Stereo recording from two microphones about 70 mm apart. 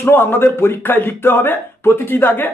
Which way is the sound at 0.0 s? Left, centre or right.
Left.